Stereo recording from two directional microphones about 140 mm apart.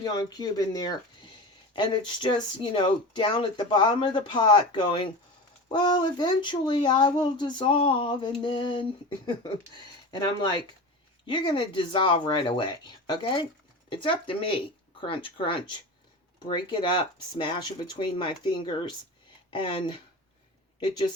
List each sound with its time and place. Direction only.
0.0 s speech: 30° left (ahead or behind)